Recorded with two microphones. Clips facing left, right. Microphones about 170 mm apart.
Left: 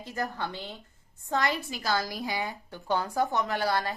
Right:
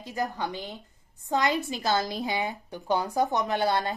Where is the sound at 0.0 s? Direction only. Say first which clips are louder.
Right 2 dB; 15° right (ahead or behind).